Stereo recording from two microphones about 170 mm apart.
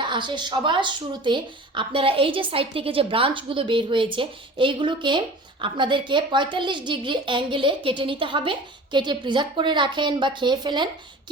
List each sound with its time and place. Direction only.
0.0 s a woman's voice: 25° right (ahead or behind)